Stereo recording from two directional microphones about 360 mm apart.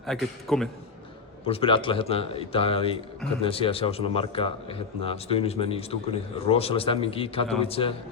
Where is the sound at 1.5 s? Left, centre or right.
Centre.